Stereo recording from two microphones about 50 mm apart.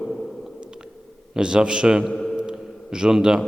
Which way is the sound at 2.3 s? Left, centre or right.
Centre.